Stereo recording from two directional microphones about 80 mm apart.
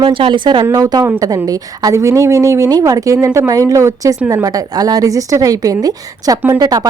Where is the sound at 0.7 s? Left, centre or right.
Right.